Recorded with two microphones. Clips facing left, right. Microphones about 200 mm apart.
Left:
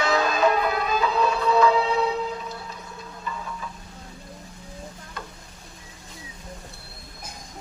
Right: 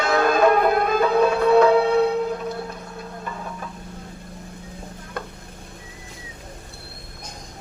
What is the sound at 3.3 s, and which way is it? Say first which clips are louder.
Stir: left 2 dB; 55° right (ahead or behind).